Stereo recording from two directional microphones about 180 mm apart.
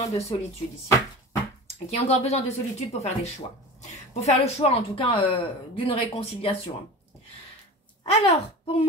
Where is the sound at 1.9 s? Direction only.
35° left (ahead or behind).